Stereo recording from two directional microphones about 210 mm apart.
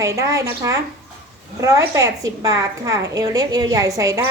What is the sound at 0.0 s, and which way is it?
A woman's voice, 15° right (ahead or behind).